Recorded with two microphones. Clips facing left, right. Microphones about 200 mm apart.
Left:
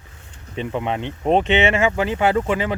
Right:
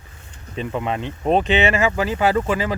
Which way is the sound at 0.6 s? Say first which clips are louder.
Even; 20° left (ahead or behind).